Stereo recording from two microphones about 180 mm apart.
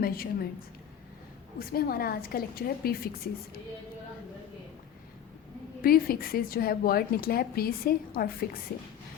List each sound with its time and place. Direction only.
0.0 s a woman's voice: 55° left (ahead or behind)
1.5 s a woman's voice: 55° left (ahead or behind)
5.8 s a woman's voice: 55° left (ahead or behind)